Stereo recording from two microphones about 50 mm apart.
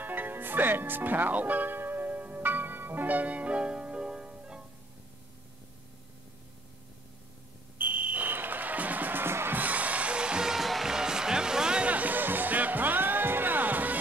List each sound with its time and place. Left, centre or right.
0.0 s music: right; by 4.6 s centre
7.7 s music: right
9.2 s music: right
9.6 s music: right; by 10.6 s centre
10.6 s music: centre
11.9 s music: right